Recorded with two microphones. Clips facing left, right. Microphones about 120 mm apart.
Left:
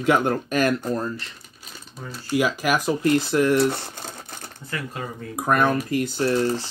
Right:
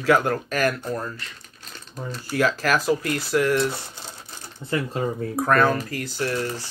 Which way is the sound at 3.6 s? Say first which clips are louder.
Left 4 dB; 55° left (ahead or behind).